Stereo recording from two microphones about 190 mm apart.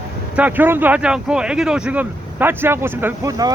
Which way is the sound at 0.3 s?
10° right (ahead or behind).